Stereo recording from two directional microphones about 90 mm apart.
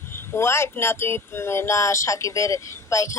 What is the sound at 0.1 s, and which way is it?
Speech, 30° left (ahead or behind).